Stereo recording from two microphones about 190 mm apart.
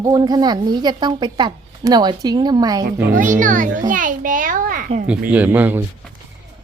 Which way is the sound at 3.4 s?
45° right (ahead or behind).